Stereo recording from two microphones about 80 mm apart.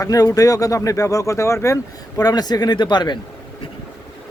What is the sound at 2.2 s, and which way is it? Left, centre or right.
Speech, left.